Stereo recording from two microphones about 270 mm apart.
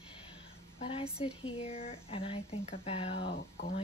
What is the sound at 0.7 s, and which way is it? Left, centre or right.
Speech, left.